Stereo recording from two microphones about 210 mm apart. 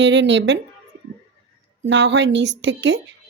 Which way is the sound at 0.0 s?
60° right (ahead or behind).